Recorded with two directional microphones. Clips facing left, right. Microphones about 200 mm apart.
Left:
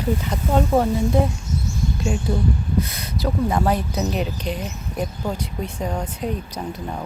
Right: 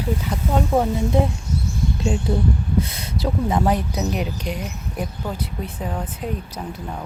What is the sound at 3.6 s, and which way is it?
Speech, 15° right (ahead or behind).